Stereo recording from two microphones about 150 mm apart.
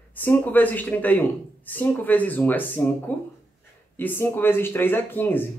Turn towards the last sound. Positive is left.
turn(degrees=15)  # may be behind; listen again after turning